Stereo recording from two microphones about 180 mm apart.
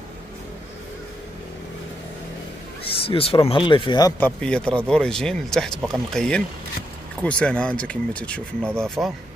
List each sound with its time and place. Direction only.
2.8 s speech: 30° left (ahead or behind)
4.2 s speech: 5° left (ahead or behind)